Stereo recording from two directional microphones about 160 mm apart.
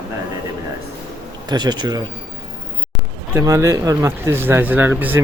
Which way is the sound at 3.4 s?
20° right (ahead or behind).